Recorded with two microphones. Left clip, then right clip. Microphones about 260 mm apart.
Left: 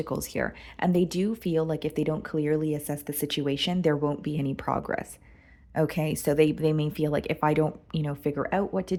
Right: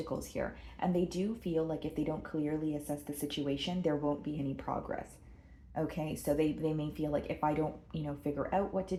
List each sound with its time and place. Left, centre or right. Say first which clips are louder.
0.1 s speech: left 7 dB; left